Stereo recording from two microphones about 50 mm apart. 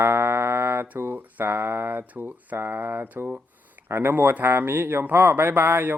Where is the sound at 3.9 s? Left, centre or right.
Right.